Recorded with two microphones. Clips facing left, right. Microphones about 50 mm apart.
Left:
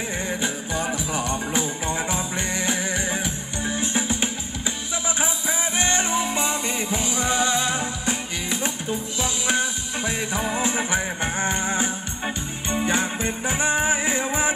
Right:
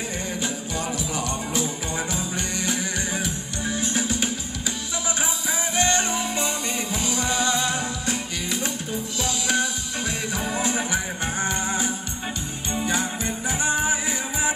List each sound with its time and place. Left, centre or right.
0.3 s music: left